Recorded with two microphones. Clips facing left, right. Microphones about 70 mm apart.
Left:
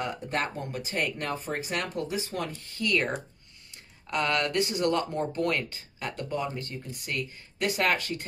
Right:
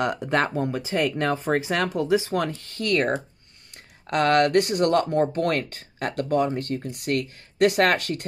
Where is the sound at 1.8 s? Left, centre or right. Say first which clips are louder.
Right 10 dB; right.